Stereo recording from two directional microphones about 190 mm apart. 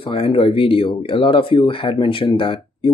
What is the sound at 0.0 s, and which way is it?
Speech, 30° left (ahead or behind).